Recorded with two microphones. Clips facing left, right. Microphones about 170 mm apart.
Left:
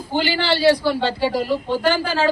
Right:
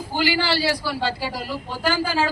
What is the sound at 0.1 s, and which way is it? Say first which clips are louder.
A woman's voice: left 2 dB; 25° left (ahead or behind).